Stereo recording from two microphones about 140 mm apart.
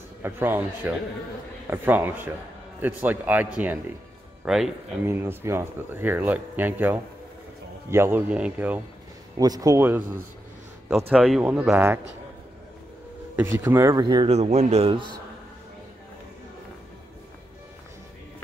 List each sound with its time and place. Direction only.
0.2 s speech: 15° right (ahead or behind)
5.0 s speech: 15° right (ahead or behind)
9.4 s speech: 25° right (ahead or behind)
13.4 s speech: 15° right (ahead or behind)
13.9 s speech: 35° right (ahead or behind)
14.3 s a man's voice: 50° right (ahead or behind)